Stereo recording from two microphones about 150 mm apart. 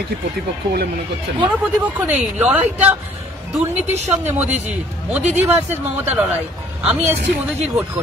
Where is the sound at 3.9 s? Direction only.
50° right (ahead or behind).